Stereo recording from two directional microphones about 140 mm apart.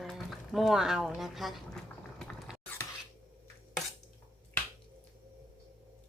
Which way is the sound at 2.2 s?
5° left (ahead or behind).